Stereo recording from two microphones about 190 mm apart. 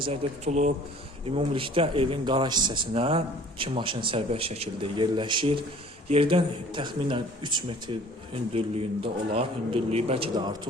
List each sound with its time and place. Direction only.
0.0 s a man's voice: 35° right (ahead or behind)